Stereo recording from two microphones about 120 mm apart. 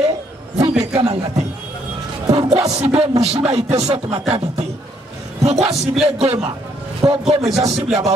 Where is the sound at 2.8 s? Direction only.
55° right (ahead or behind).